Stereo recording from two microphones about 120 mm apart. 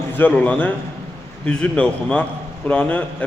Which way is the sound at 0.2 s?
10° left (ahead or behind).